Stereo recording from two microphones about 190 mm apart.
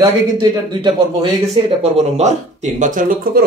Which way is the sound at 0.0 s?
20° right (ahead or behind).